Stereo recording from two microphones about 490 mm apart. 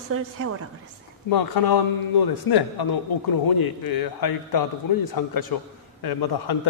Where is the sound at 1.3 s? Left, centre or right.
Left.